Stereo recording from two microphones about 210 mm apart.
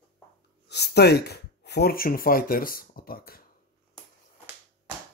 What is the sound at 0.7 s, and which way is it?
Speech, 50° left (ahead or behind).